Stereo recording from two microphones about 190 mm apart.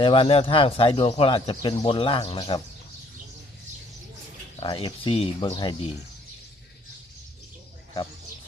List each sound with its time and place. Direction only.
0.0 s speech: 25° left (ahead or behind)
4.6 s speech: 25° left (ahead or behind)